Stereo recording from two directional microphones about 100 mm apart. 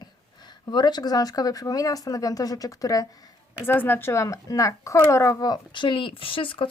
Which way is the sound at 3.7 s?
20° left (ahead or behind).